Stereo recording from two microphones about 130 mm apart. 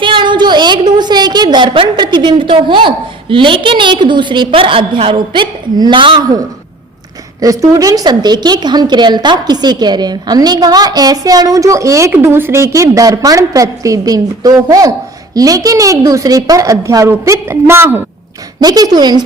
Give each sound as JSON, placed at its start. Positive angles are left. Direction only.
{"t": 0.0, "sound": "a woman's voice", "side_deg": -40}
{"t": 7.4, "sound": "a woman's voice", "side_deg": -25}
{"t": 18.6, "sound": "a woman's voice", "side_deg": -30}